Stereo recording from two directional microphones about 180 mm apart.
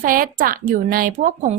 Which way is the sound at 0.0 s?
50° right (ahead or behind).